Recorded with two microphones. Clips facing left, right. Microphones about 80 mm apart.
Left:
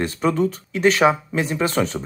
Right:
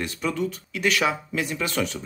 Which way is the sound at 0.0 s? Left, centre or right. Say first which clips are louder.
Left 7 dB; left.